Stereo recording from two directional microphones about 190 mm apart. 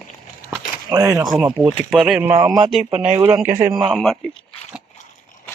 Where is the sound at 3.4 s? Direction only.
45° right (ahead or behind).